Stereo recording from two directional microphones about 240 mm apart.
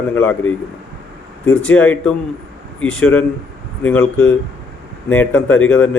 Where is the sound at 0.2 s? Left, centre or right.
Centre.